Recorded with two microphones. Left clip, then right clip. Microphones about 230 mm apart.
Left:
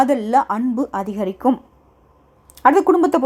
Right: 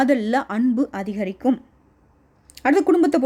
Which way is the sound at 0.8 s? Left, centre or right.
Centre.